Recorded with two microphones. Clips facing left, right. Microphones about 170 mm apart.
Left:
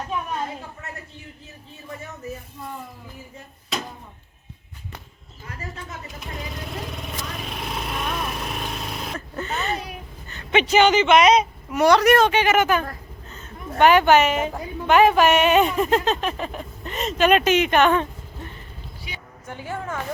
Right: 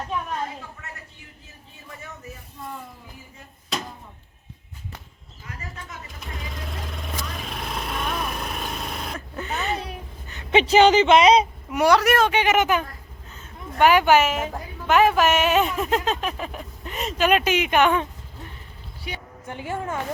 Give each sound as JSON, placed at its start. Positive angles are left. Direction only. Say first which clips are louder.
{"t": 6.1, "sound": "vehicle", "louder": "left 3 dB", "side_deg": 0}
{"t": 9.1, "sound": "a sound", "louder": "left 1 dB", "side_deg": -10}
{"t": 10.5, "sound": "speech", "louder": "right 2 dB", "side_deg": -30}
{"t": 11.7, "sound": "a woman's voice", "louder": "left 3 dB", "side_deg": -10}
{"t": 12.4, "sound": "a woman's voice", "louder": "left 1 dB", "side_deg": -15}
{"t": 19.1, "sound": "a sound", "louder": "right 6 dB", "side_deg": -55}
{"t": 19.5, "sound": "a woman's voice", "louder": "right 1 dB", "side_deg": -15}